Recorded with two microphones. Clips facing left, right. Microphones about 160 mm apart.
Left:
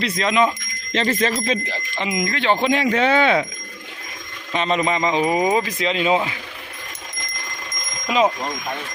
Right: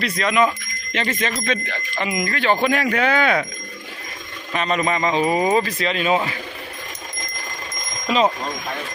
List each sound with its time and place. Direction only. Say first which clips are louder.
0.2 s speech: even; 20° left (ahead or behind)
4.5 s speech: left 1 dB; 25° left (ahead or behind)
8.0 s speech: even; 15° left (ahead or behind)